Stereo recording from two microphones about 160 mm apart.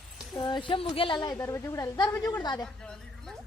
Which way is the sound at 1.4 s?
15° left (ahead or behind).